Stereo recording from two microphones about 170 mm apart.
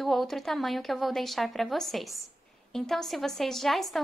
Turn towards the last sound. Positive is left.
turn(degrees=0)  # may be behind; listen again after turning